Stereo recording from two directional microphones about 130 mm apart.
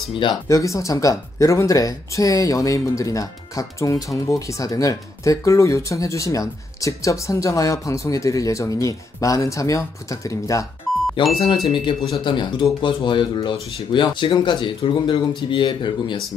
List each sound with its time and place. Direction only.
0.1 s speech: 40° left (ahead or behind)
0.5 s speech: 25° left (ahead or behind)
11.2 s speech: 40° left (ahead or behind)